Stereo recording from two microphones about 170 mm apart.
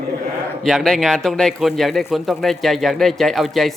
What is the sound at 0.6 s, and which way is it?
Speech, 5° left (ahead or behind).